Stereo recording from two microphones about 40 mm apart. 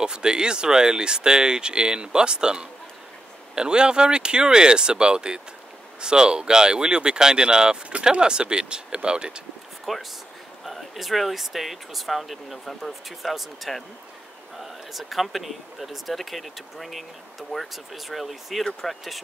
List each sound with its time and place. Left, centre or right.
0.0 s speech: right
9.9 s speech: centre